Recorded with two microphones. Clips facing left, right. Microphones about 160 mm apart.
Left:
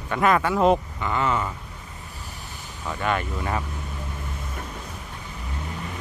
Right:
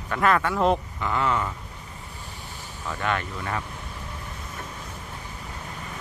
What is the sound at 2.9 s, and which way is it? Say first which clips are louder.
Speech: left 2 dB; 5° left (ahead or behind).